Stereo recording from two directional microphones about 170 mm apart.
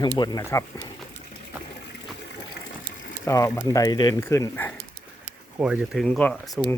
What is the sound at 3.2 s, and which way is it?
Speech, 20° left (ahead or behind).